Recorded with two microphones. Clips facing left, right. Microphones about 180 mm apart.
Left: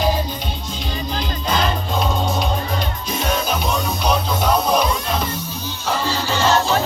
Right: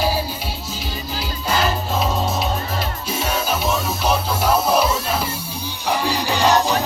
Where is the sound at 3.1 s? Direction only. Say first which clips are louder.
Left 1 dB; 5° right (ahead or behind).